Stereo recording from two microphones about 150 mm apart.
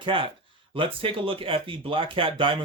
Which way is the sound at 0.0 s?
35° right (ahead or behind).